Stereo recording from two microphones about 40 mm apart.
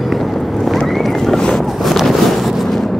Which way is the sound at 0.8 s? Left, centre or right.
Centre.